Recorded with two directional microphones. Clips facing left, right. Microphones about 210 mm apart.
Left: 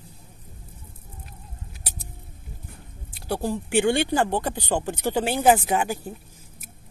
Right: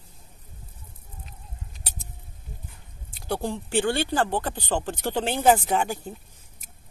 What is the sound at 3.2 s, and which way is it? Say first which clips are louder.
Speech: left 2 dB; 10° left (ahead or behind).